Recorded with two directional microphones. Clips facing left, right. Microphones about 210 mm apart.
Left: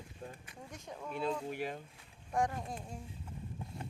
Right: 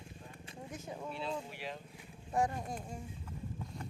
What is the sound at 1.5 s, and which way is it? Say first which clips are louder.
Speech: left 5 dB; 50° left (ahead or behind).